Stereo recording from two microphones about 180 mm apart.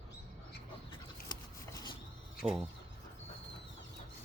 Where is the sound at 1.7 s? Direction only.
20° left (ahead or behind).